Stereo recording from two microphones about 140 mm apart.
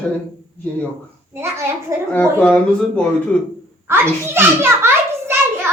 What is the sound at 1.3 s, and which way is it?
Speech, 20° right (ahead or behind).